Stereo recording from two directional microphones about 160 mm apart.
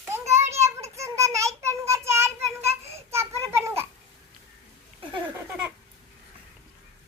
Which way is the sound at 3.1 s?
15° right (ahead or behind).